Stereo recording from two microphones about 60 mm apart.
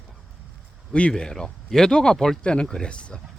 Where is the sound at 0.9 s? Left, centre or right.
Centre.